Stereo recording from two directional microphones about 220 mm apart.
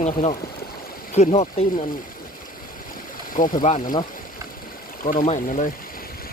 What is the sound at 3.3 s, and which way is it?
Speech, 35° left (ahead or behind).